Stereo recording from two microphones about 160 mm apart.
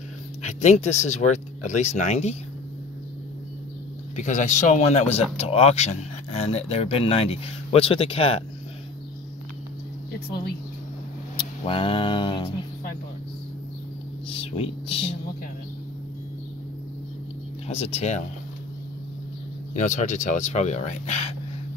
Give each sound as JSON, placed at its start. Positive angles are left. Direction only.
{"t": 0.4, "sound": "speech", "side_deg": 50}
{"t": 4.2, "sound": "speech", "side_deg": 50}
{"t": 11.3, "sound": "speech", "side_deg": 35}
{"t": 14.3, "sound": "speech", "side_deg": 35}
{"t": 17.6, "sound": "speech", "side_deg": 40}
{"t": 19.7, "sound": "speech", "side_deg": 50}